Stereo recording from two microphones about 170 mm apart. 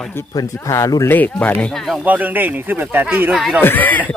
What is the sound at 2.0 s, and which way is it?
Speech, 10° right (ahead or behind).